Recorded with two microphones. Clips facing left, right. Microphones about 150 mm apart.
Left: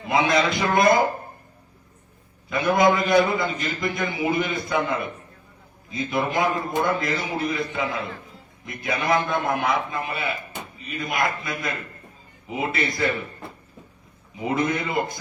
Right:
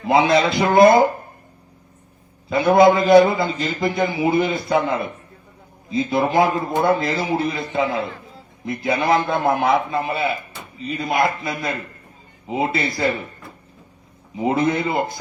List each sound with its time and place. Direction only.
0.0 s a man's voice: 30° right (ahead or behind)
2.5 s a man's voice: 30° right (ahead or behind)
14.3 s a man's voice: 30° right (ahead or behind)